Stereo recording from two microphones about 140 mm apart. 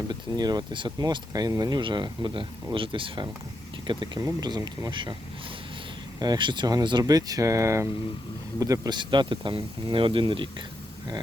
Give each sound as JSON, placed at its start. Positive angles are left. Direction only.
{"t": 0.1, "sound": "speech", "side_deg": -30}
{"t": 6.1, "sound": "speech", "side_deg": -30}